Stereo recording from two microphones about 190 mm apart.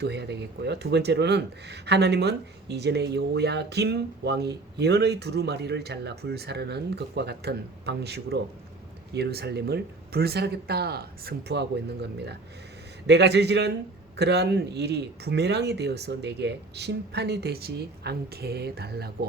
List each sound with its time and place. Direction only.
0.0 s speech: 60° right (ahead or behind)
13.1 s speech: 60° right (ahead or behind)